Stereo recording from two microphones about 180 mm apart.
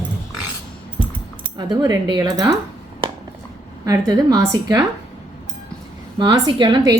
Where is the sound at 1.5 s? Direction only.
25° right (ahead or behind).